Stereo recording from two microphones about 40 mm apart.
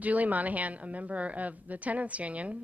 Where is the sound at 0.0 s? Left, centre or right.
Right.